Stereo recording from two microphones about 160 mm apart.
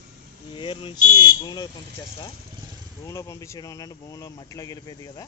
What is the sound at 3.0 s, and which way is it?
Speech, 20° left (ahead or behind).